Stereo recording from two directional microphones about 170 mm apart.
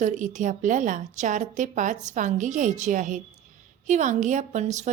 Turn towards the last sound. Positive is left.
turn(degrees=-45)  # may be behind; listen again after turning